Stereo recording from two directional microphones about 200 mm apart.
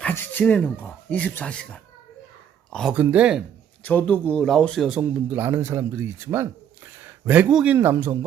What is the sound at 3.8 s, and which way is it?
Speech, 10° left (ahead or behind).